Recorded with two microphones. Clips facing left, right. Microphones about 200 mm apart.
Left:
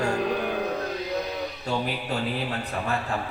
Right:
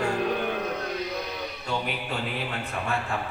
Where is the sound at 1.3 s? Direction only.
40° left (ahead or behind).